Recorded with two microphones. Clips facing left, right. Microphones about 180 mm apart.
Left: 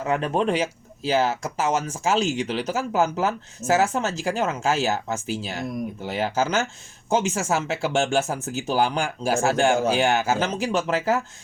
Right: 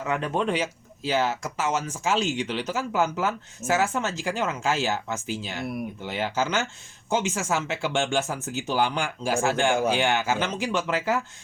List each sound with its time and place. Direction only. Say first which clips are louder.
0.0 s speech: left 3 dB; 40° left (ahead or behind)